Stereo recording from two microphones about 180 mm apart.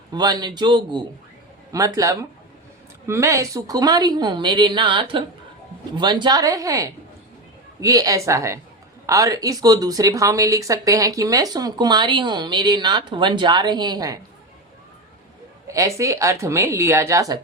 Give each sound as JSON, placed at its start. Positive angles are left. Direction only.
{"t": 0.1, "sound": "speech", "side_deg": -25}
{"t": 15.6, "sound": "speech", "side_deg": -15}